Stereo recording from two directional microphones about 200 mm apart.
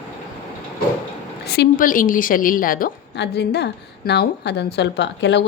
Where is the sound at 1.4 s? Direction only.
50° left (ahead or behind).